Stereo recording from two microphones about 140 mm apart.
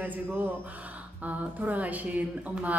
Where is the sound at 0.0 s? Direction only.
15° right (ahead or behind).